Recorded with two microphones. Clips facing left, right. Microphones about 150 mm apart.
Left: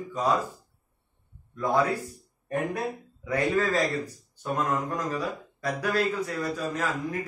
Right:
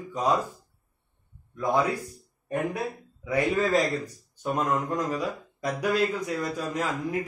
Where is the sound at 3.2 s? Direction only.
15° right (ahead or behind).